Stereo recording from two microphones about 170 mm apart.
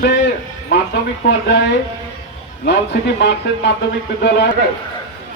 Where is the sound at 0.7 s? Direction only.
90° left.